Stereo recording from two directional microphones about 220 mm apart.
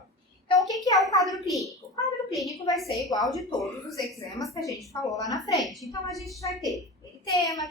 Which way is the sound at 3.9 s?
15° left (ahead or behind).